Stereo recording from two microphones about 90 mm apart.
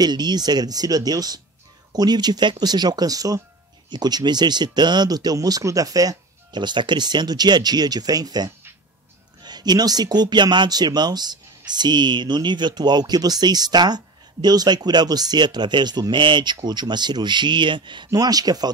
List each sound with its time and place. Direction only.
0.0 s speech: 50° right (ahead or behind)
3.9 s speech: 50° right (ahead or behind)
18.1 s speech: 45° right (ahead or behind)